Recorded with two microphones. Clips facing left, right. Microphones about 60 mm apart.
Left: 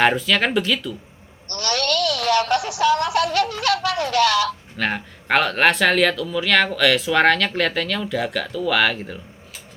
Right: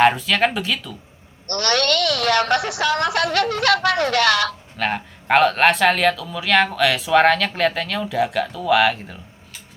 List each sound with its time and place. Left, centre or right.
0.0 s speech: centre
1.5 s music: right
4.8 s speech: centre